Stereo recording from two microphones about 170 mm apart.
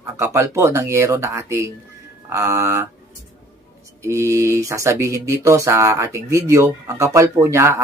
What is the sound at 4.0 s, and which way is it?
Speech, 15° right (ahead or behind).